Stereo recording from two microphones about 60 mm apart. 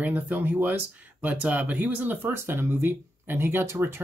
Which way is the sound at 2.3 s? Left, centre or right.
Right.